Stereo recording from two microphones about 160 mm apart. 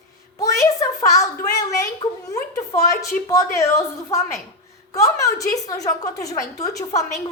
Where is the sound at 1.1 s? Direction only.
20° left (ahead or behind).